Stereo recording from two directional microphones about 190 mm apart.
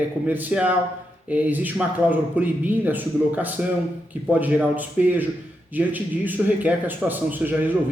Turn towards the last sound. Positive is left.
turn(degrees=-10)  # may be behind; listen again after turning